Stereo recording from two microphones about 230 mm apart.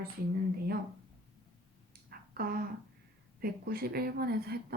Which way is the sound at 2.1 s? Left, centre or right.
Right.